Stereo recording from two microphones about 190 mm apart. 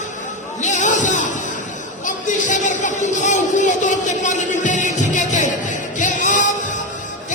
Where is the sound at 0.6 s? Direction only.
40° left (ahead or behind).